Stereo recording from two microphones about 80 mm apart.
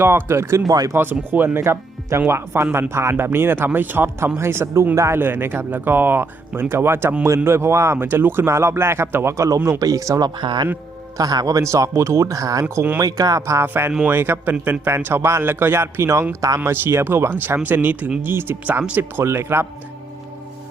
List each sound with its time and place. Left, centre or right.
0.0 s speech: right
0.7 s speech: right
1.5 s speech: right
5.2 s speech: right
9.6 s speech: right
11.2 s speech: right
16.3 s speech: right
16.6 s speech: right